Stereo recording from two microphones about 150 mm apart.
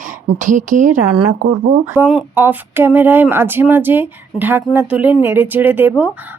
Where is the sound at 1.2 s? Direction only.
50° right (ahead or behind).